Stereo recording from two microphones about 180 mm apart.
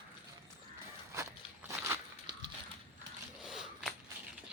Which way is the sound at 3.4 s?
Centre (ahead or behind).